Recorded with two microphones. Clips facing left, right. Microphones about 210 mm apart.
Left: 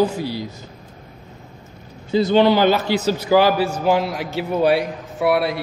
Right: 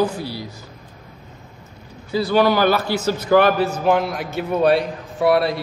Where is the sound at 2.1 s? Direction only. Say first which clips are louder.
Left 2 dB; 20° left (ahead or behind); by 5.6 s 5° left (ahead or behind).